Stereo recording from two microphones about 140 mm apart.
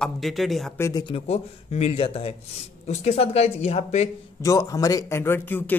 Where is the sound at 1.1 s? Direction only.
50° left (ahead or behind).